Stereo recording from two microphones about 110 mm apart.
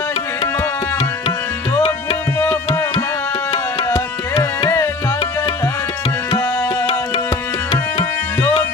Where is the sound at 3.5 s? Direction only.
35° left (ahead or behind).